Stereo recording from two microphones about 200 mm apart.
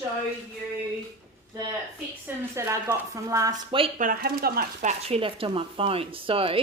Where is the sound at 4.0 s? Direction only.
45° right (ahead or behind).